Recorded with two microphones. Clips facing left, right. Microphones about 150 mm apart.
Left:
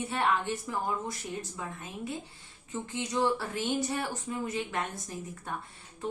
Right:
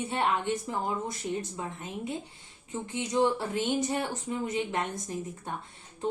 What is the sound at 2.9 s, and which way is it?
Speech, 20° right (ahead or behind).